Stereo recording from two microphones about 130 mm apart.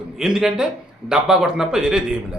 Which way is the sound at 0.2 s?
5° right (ahead or behind).